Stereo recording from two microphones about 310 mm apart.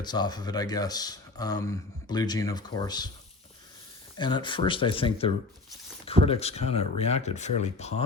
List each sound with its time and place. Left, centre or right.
0.0 s speech: centre
4.2 s speech: centre